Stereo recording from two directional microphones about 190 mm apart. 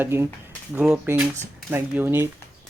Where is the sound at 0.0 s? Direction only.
10° right (ahead or behind).